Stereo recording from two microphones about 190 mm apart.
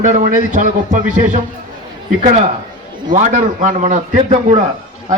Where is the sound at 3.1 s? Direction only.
40° right (ahead or behind).